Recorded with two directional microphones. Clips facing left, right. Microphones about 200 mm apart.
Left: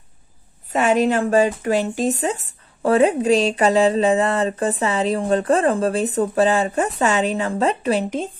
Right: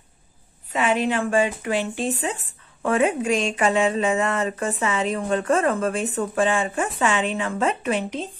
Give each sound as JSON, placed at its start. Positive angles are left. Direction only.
{"t": 0.7, "sound": "speech", "side_deg": 45}